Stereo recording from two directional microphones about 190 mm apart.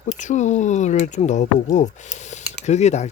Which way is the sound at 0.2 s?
40° left (ahead or behind).